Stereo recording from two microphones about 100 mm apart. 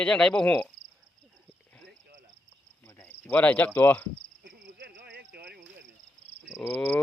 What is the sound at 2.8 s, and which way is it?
Cricket, 20° left (ahead or behind).